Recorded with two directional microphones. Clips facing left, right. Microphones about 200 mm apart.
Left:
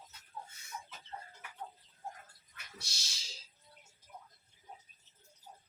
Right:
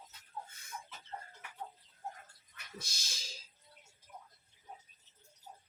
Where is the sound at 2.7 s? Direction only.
50° right (ahead or behind).